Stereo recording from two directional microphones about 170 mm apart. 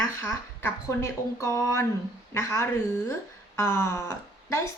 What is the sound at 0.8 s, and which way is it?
A woman's voice, 20° left (ahead or behind).